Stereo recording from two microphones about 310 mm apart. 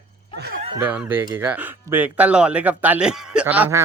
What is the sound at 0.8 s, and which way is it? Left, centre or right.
A child's voice, centre.